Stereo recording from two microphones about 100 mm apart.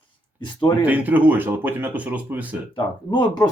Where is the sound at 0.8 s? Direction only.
15° right (ahead or behind).